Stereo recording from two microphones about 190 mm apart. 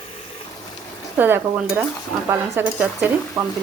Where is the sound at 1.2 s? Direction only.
10° right (ahead or behind).